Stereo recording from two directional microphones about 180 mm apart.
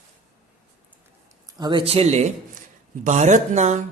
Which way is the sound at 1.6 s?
25° right (ahead or behind).